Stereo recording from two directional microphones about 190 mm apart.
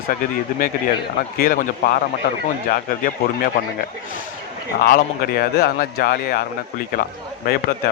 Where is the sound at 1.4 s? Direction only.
50° left (ahead or behind).